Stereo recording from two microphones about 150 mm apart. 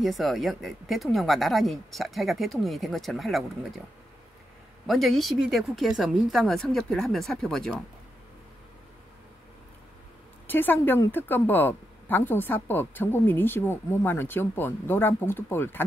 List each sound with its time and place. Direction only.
0.0 s speech: centre (ahead or behind)
4.8 s speech: centre (ahead or behind)
10.4 s a woman's voice: 15° left (ahead or behind)